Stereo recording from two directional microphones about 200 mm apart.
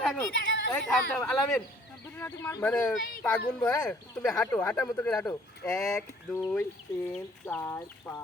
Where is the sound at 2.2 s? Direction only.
10° left (ahead or behind).